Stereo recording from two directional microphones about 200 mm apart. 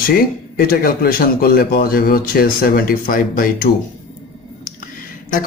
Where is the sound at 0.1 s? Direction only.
45° left (ahead or behind).